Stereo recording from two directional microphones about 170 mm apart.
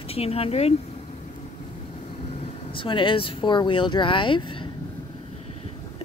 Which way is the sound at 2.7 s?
30° left (ahead or behind).